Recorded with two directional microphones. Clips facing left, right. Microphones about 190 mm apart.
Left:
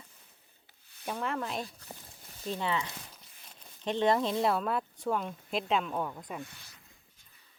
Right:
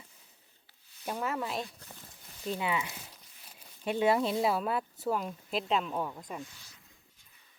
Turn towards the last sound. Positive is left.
turn(degrees=60)  # may be behind; listen again after turning